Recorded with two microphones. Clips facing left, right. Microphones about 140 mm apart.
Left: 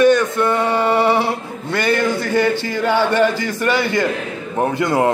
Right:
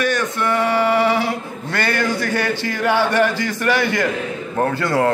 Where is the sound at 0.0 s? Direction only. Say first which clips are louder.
Left 7 dB; 25° left (ahead or behind).